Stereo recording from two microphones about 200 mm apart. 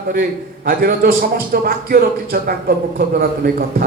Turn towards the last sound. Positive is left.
turn(degrees=-50)  # may be behind; listen again after turning